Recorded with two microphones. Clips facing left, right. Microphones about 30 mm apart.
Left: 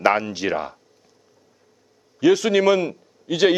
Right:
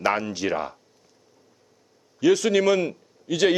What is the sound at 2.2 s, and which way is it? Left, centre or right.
A man's voice, centre.